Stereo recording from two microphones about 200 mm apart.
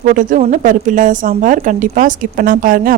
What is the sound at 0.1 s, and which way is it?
Speech, 40° right (ahead or behind).